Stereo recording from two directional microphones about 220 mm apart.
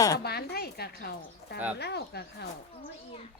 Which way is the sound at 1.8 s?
50° left (ahead or behind).